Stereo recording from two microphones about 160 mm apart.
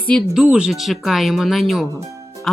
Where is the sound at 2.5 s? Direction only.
Centre (ahead or behind).